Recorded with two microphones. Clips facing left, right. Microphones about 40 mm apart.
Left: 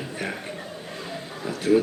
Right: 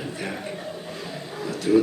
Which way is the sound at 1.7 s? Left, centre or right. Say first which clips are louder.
Right 1 dB; left.